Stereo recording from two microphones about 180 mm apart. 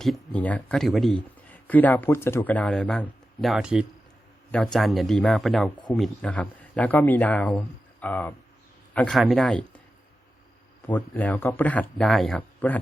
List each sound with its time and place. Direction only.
0.3 s speech: 10° left (ahead or behind)
5.7 s speech: 25° left (ahead or behind)
6.0 s a man's voice: 5° left (ahead or behind)
10.8 s speech: 10° left (ahead or behind)